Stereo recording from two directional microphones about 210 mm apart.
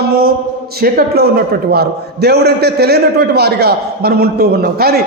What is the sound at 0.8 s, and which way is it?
A man's voice, 45° right (ahead or behind).